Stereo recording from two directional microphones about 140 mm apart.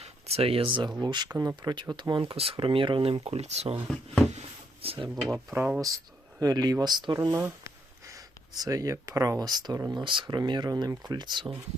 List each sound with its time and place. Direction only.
0.0 s speech: 45° right (ahead or behind)
4.4 s a sound: 45° right (ahead or behind)
5.0 s speech: centre (ahead or behind)
6.4 s speech: 25° right (ahead or behind)